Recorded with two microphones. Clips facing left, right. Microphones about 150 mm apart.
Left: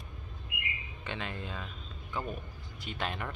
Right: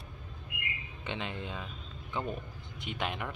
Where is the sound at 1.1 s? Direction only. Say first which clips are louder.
Right 1 dB; 20° right (ahead or behind).